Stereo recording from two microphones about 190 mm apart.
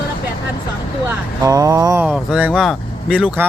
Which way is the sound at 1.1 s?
20° right (ahead or behind).